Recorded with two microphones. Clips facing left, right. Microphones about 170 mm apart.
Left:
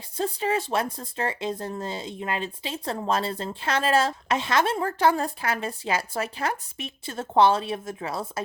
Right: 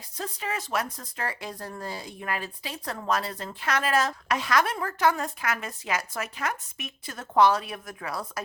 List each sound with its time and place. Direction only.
0.2 s speech: 30° left (ahead or behind)